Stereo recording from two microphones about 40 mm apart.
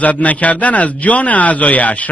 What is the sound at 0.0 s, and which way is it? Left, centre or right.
Speech, left.